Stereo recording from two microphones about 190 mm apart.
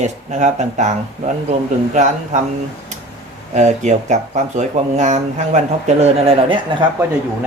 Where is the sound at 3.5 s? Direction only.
40° right (ahead or behind).